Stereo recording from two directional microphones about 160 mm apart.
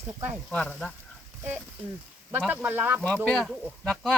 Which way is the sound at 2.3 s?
10° right (ahead or behind).